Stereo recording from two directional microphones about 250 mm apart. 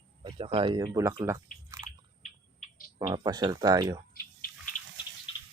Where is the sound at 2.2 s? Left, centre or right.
Left.